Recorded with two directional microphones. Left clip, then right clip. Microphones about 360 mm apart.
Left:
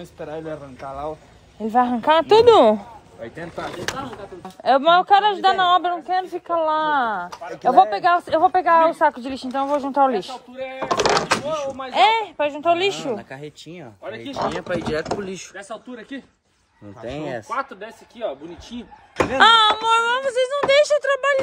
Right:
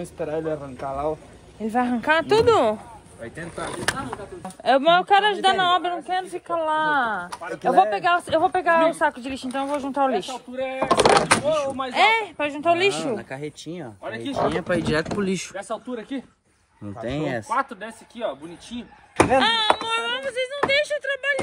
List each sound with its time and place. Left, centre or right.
0.0 s speech: centre
10.2 s speech: centre
11.9 s speech: centre; by 17.9 s right
19.3 s speech: centre